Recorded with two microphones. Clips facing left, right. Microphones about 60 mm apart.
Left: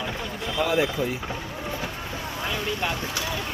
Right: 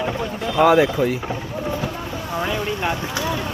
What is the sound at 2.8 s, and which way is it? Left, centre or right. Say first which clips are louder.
Speech: right 6 dB; centre.